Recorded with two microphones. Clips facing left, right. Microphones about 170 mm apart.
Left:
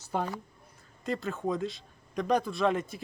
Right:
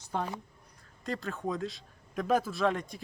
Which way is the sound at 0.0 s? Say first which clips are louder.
Left 2 dB; 5° left (ahead or behind).